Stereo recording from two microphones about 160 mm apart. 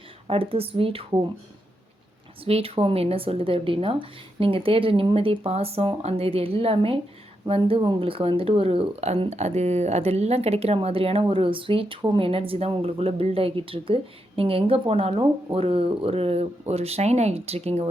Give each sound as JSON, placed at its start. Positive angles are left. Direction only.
{"t": 0.3, "sound": "speech", "side_deg": -35}
{"t": 2.4, "sound": "speech", "side_deg": -35}